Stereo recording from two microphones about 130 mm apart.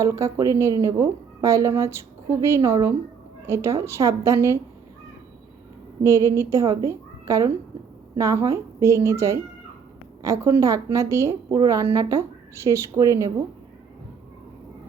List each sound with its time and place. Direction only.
0.0 s a woman's voice: 25° right (ahead or behind)
6.0 s a woman's voice: 20° right (ahead or behind)